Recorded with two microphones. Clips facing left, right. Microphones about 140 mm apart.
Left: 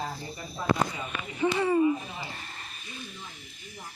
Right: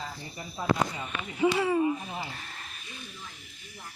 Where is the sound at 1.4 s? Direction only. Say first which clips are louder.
Even; 5° right (ahead or behind).